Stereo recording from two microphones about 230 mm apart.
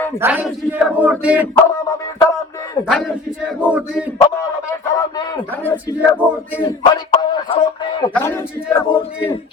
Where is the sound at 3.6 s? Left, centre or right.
Centre.